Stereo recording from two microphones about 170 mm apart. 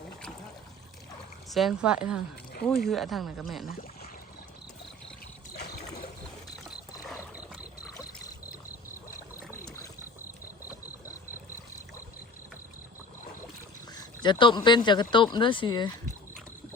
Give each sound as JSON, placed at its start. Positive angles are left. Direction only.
{"t": 1.5, "sound": "speech", "side_deg": 0}
{"t": 7.9, "sound": "boat", "side_deg": 20}
{"t": 13.9, "sound": "speech", "side_deg": 25}